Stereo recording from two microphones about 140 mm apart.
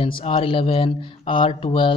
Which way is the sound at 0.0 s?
40° left (ahead or behind).